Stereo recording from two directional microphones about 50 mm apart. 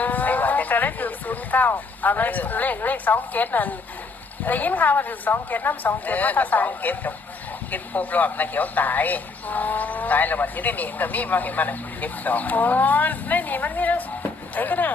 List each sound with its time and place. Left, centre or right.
0.0 s speech: left